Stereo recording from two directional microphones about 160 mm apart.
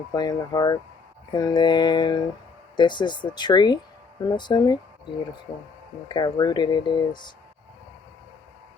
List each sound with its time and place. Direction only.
0.1 s speech: 25° left (ahead or behind)
6.1 s speech: 25° left (ahead or behind)